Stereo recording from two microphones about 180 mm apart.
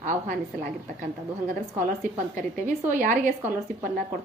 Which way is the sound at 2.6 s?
45° right (ahead or behind).